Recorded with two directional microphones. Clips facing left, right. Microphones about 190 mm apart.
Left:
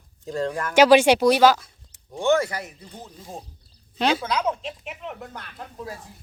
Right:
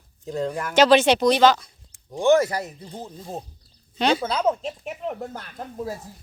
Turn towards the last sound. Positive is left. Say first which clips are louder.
# right 4 dB
turn(degrees=-40)  # may be behind; listen again after turning